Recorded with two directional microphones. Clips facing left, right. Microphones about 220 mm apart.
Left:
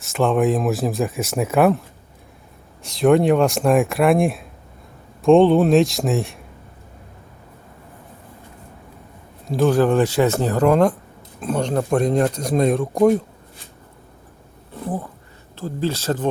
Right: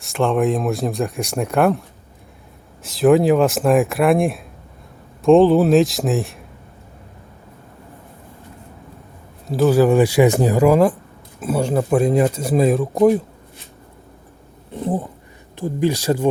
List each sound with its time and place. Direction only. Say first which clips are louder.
0.0 s speech: even; centre (ahead or behind)
2.8 s speech: right 1 dB; centre (ahead or behind)
9.5 s speech: right 2 dB; 5° right (ahead or behind)
14.8 s speech: right 4 dB; 25° right (ahead or behind)